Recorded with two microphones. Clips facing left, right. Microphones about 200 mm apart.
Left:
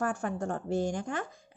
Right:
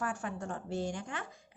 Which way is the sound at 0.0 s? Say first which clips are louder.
Left 6 dB; 45° left (ahead or behind).